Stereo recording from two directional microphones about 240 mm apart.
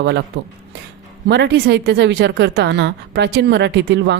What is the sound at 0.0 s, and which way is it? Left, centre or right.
Speech, right.